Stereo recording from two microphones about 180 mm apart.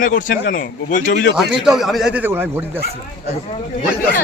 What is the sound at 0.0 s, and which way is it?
A man's voice, 50° left (ahead or behind).